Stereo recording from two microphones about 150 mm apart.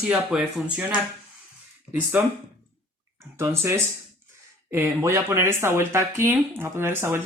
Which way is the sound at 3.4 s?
15° right (ahead or behind).